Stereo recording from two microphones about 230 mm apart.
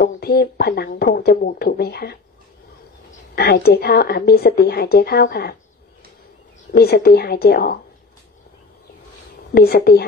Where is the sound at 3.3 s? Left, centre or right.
Left.